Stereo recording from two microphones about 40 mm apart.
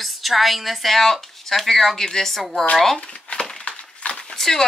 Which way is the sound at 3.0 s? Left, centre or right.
Left.